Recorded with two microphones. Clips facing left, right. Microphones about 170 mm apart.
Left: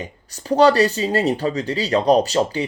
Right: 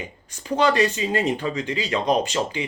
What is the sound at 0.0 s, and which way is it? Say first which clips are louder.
Speech: left 3 dB; 35° left (ahead or behind).